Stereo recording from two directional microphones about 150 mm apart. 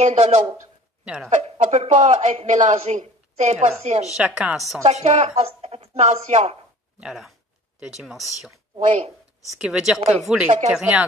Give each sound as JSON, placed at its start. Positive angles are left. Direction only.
{"t": 0.0, "sound": "a woman's voice", "side_deg": -50}
{"t": 1.0, "sound": "speech", "side_deg": -10}
{"t": 1.3, "sound": "a woman's voice", "side_deg": -50}
{"t": 4.4, "sound": "speech", "side_deg": 0}
{"t": 4.8, "sound": "a woman's voice", "side_deg": -50}
{"t": 7.0, "sound": "speech", "side_deg": -5}
{"t": 8.7, "sound": "a woman's voice", "side_deg": -50}
{"t": 9.6, "sound": "a woman's voice", "side_deg": -5}